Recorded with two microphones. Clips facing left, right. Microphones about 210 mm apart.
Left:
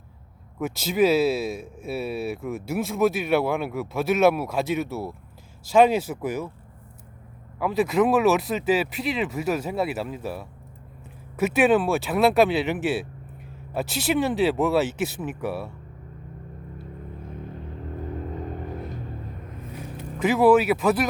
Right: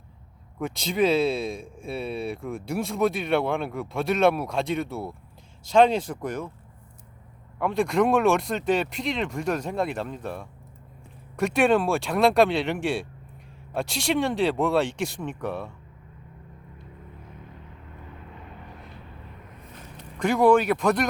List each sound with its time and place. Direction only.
0.6 s speech: 5° left (ahead or behind)
7.6 s speech: 5° left (ahead or behind)
17.9 s vehicle: 40° left (ahead or behind)
20.0 s speech: 5° left (ahead or behind)